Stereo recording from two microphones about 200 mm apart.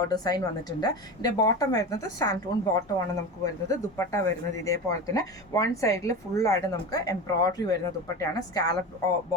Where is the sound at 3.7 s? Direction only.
15° left (ahead or behind).